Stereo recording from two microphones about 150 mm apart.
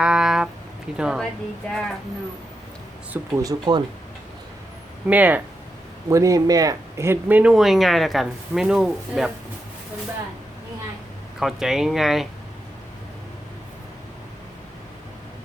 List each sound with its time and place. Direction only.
0.0 s a sound: 5° right (ahead or behind)
0.9 s speech: 5° right (ahead or behind)
3.3 s speech: 25° right (ahead or behind)
5.0 s speech: 10° right (ahead or behind)
6.1 s speech: 20° right (ahead or behind); by 9.3 s 5° right (ahead or behind)
11.3 s speech: centre (ahead or behind)